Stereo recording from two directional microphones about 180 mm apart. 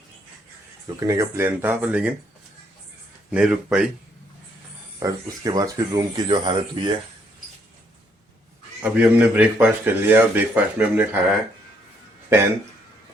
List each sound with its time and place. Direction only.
0.9 s speech: 20° right (ahead or behind)
3.3 s speech: 5° right (ahead or behind)
4.9 s speech: 20° right (ahead or behind)
8.8 s speech: 5° right (ahead or behind)